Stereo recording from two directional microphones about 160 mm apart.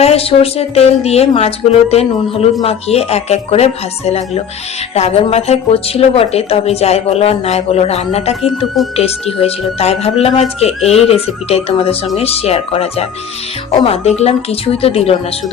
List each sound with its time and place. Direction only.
0.0 s speech: 40° left (ahead or behind)
8.4 s speech: centre (ahead or behind)
9.0 s speech: 40° left (ahead or behind)